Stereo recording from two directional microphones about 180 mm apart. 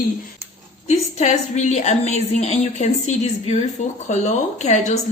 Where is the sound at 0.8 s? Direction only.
40° left (ahead or behind).